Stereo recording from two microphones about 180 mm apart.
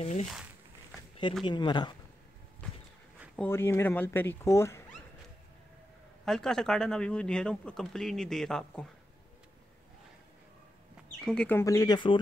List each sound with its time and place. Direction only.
0.0 s speech: 35° left (ahead or behind)
1.4 s speech: 25° left (ahead or behind)
3.3 s speech: 15° left (ahead or behind)
6.2 s speech: 5° left (ahead or behind)
11.1 s speech: 5° left (ahead or behind); by 12.2 s 25° left (ahead or behind)